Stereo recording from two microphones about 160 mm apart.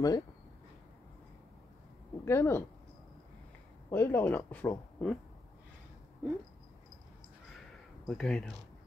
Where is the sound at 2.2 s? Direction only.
15° left (ahead or behind).